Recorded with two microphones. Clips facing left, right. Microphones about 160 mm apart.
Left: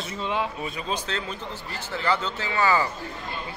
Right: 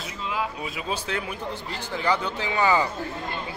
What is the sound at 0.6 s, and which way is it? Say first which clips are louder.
Speech: even; 10° right (ahead or behind).